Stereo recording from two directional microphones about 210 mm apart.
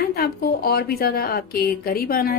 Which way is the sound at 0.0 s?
45° left (ahead or behind).